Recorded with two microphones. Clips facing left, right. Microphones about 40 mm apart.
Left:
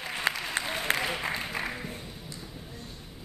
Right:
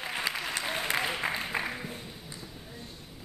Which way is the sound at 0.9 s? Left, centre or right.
Centre.